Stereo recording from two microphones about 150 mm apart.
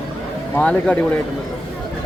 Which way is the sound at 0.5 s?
5° left (ahead or behind).